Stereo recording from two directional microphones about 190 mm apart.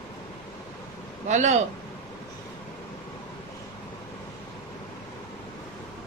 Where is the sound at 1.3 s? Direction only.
40° right (ahead or behind).